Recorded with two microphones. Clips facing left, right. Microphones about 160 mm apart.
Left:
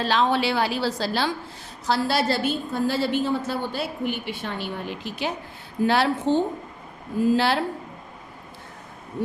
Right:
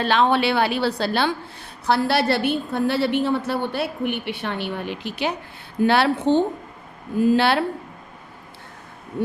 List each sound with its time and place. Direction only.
0.0 s a woman's voice: 60° right (ahead or behind)